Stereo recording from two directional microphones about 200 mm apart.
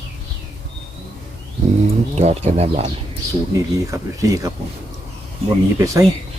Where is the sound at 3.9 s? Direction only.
15° right (ahead or behind).